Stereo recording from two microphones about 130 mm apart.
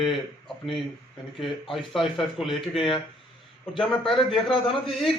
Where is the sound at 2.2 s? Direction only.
Centre (ahead or behind).